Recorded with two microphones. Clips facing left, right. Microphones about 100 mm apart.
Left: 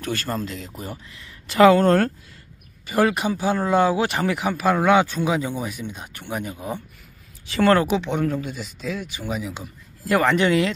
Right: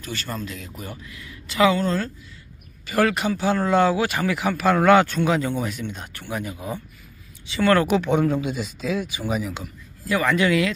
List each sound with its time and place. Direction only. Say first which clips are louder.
0.0 s a man's voice: left 5 dB; 50° left (ahead or behind)
0.4 s speech: left 3 dB; 35° left (ahead or behind); by 2.1 s 60° left (ahead or behind)
2.9 s speech: left 1 dB; 15° left (ahead or behind)
4.7 s speech: right 3 dB; 5° left (ahead or behind)
6.1 s speech: left 2 dB; 20° left (ahead or behind)
7.4 s speech: left 2 dB; 45° left (ahead or behind)
7.9 s speech: right 3 dB; 10° right (ahead or behind)
10.0 s speech: left 2 dB; 35° left (ahead or behind)